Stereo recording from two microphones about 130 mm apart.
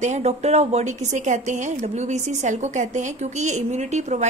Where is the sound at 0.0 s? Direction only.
60° right (ahead or behind).